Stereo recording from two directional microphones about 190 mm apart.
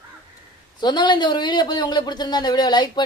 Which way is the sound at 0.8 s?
25° left (ahead or behind).